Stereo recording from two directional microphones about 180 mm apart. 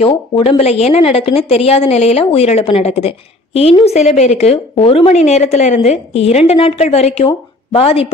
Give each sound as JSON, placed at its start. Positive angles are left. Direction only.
{"t": 0.1, "sound": "a woman's voice", "side_deg": 30}